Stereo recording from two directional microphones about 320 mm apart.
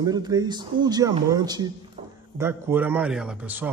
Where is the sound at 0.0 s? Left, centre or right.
Centre.